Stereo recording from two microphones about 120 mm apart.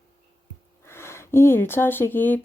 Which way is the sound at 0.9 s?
20° left (ahead or behind).